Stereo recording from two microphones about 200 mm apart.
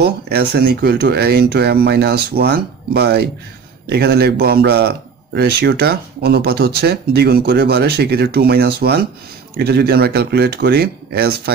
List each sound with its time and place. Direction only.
0.0 s a man's voice: 50° right (ahead or behind)